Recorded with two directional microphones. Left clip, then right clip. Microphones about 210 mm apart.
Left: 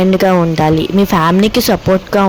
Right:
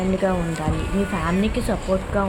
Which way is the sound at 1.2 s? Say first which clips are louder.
Left 12 dB; 45° left (ahead or behind).